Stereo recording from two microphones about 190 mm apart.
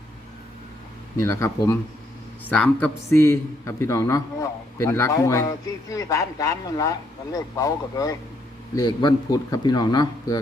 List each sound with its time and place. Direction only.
1.2 s a man's voice: 15° left (ahead or behind)